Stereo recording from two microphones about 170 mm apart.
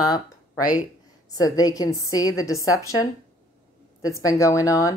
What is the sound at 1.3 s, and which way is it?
Speech, 20° left (ahead or behind).